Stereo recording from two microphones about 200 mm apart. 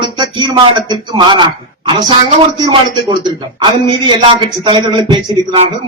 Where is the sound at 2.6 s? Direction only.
20° right (ahead or behind).